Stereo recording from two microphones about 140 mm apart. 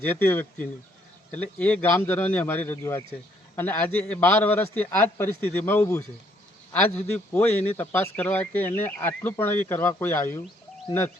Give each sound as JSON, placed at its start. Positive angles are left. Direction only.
{"t": 0.0, "sound": "a man's voice", "side_deg": 15}